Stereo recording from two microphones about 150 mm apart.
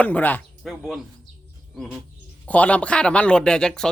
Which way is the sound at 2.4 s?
10° left (ahead or behind).